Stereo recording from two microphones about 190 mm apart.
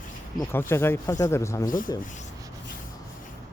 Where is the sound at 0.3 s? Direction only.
10° left (ahead or behind).